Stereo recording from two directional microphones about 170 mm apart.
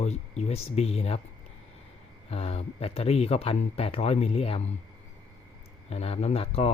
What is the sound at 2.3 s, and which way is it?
Speech, 35° left (ahead or behind).